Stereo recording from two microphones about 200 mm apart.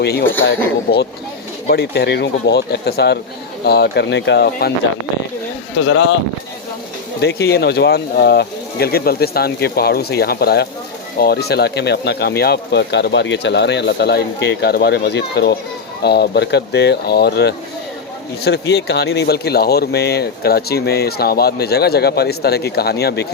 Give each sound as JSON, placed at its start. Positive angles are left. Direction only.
{"t": 0.0, "sound": "speech", "side_deg": 55}
{"t": 5.7, "sound": "speech", "side_deg": 60}
{"t": 7.2, "sound": "speech", "side_deg": 55}